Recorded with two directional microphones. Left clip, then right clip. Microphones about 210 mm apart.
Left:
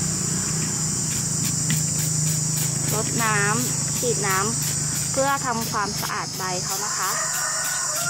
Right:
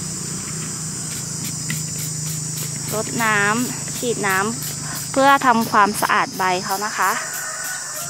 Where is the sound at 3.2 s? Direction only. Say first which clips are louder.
Right 5 dB; 40° right (ahead or behind).